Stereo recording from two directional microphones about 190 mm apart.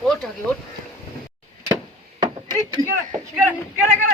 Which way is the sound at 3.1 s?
5° right (ahead or behind).